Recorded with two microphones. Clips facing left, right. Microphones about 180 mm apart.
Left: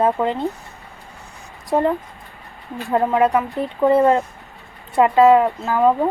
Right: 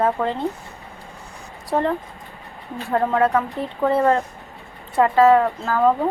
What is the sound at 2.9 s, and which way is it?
Speech, 15° left (ahead or behind).